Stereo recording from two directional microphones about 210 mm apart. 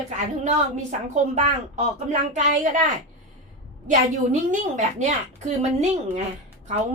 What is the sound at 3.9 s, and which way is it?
A woman's voice, 35° right (ahead or behind).